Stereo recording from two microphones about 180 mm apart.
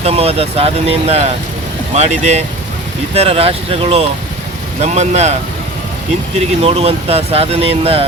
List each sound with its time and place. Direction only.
0.0 s speech: 35° right (ahead or behind)
6.6 s speech: 35° right (ahead or behind)